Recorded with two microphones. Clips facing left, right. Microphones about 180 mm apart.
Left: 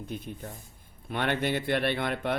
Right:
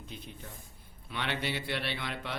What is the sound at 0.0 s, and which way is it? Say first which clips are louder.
Speech: left 8 dB; 50° left (ahead or behind).